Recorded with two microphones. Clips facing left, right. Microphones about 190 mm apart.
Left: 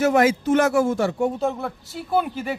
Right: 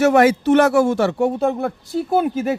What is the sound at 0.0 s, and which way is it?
Speech, 65° right (ahead or behind).